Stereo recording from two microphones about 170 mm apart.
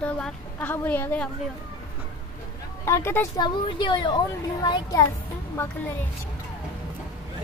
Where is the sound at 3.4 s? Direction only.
30° left (ahead or behind).